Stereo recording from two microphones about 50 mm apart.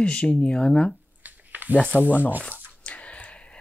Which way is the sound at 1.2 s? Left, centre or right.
Right.